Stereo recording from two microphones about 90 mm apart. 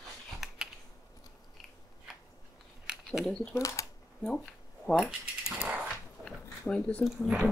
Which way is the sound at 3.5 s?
35° left (ahead or behind).